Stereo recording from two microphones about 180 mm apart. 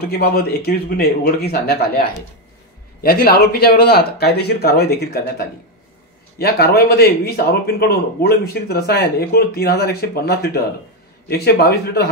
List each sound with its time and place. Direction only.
0.0 s speech: 60° left (ahead or behind)
6.3 s speech: 60° left (ahead or behind)